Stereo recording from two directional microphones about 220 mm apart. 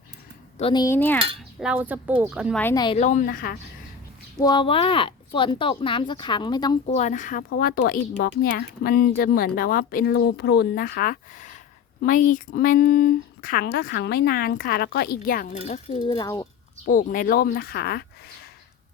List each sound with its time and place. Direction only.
0.6 s speech: 20° left (ahead or behind)
1.5 s speech: 5° right (ahead or behind)
2.6 s speech: 10° left (ahead or behind)
2.8 s speech: 30° left (ahead or behind); by 3.6 s 45° left (ahead or behind)
4.4 s speech: 20° left (ahead or behind)
6.8 s speech: 30° left (ahead or behind)
15.6 s speech: 30° left (ahead or behind)
16.8 s speech: 40° left (ahead or behind)